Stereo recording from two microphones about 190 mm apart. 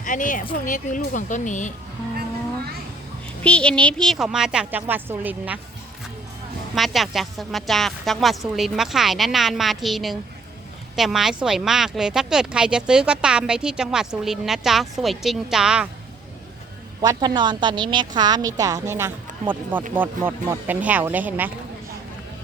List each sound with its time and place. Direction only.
0.0 s a woman's voice: 45° left (ahead or behind)
3.4 s speech: 5° left (ahead or behind)
6.7 s speech: centre (ahead or behind)
17.0 s a woman's voice: 20° right (ahead or behind)